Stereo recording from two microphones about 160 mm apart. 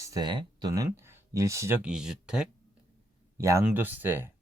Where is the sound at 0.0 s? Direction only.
25° right (ahead or behind); by 2.5 s 5° right (ahead or behind).